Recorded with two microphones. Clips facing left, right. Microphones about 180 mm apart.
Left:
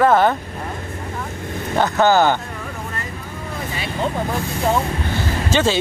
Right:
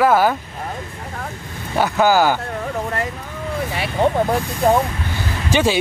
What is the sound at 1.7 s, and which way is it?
Speech, 10° right (ahead or behind).